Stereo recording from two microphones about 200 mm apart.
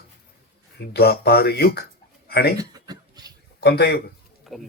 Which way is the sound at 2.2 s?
50° left (ahead or behind).